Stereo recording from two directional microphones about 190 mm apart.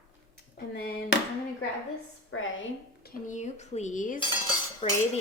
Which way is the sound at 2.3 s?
90° left.